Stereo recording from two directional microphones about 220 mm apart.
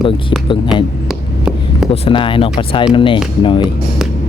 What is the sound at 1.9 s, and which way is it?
Speech, 25° left (ahead or behind).